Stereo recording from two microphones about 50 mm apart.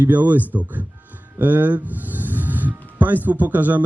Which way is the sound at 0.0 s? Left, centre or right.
Right.